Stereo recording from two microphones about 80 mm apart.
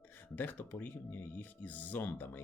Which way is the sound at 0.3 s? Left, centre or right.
Left.